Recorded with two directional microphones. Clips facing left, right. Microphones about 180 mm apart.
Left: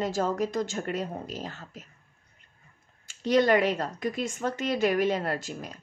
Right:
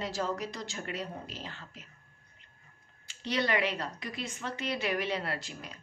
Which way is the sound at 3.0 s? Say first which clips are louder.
Left 9 dB; 45° left (ahead or behind).